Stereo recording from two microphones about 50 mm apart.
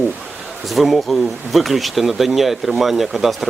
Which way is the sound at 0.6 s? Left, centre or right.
Centre.